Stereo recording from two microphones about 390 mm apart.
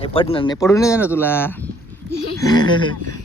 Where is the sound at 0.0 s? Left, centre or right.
Centre.